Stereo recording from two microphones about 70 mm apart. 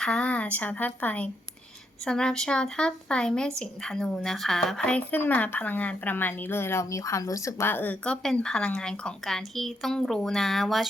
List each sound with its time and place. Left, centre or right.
0.0 s a woman's voice: centre
2.0 s a woman's voice: centre
4.8 s a woman's voice: centre; by 7.7 s left
7.7 s a woman's voice: left
8.0 s a woman's voice: centre